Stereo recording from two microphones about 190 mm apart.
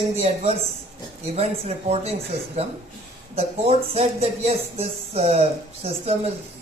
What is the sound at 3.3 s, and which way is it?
Speech, 30° right (ahead or behind).